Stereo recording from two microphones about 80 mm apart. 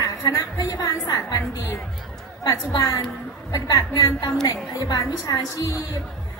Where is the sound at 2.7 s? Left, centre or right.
Left.